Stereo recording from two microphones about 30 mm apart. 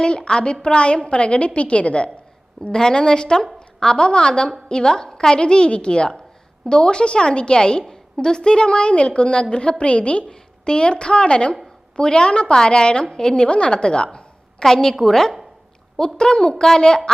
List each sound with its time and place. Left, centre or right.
0.0 s a woman's voice: left
2.7 s a woman's voice: left
5.3 s a woman's voice: left
14.6 s a woman's voice: centre
16.0 s a woman's voice: left